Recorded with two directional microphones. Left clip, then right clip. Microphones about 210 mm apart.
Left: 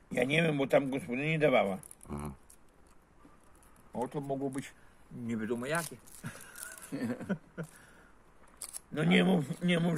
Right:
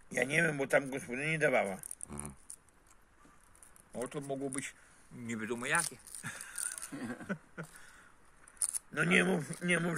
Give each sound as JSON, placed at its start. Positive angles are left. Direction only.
{"t": 0.1, "sound": "speech", "side_deg": -10}
{"t": 3.9, "sound": "speech", "side_deg": -30}
{"t": 6.9, "sound": "speech", "side_deg": 50}
{"t": 8.5, "sound": "speech", "side_deg": -5}